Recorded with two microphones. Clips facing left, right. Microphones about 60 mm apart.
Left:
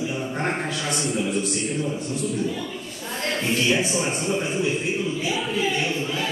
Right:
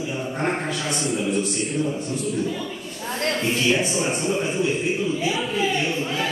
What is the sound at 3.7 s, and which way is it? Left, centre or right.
A man's voice, centre.